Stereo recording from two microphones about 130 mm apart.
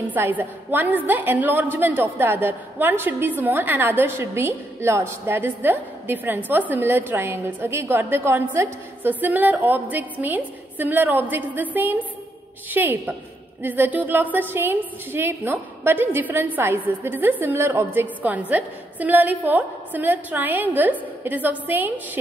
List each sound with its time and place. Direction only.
0.1 s a woman's voice: 15° right (ahead or behind)